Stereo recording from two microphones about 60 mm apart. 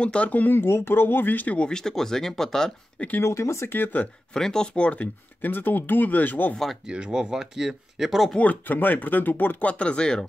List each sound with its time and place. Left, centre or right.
0.0 s speech: left
1.7 s speech: centre
3.3 s speech: left
3.7 s speech: left
4.0 s speech: centre; by 6.5 s left
6.9 s speech: centre
8.4 s speech: left